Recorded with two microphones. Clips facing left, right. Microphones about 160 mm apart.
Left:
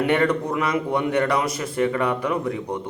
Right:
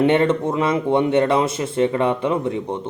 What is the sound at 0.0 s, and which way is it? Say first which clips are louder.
Speech: right 4 dB; 25° right (ahead or behind).